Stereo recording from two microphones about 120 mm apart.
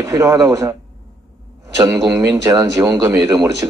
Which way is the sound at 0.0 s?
25° right (ahead or behind).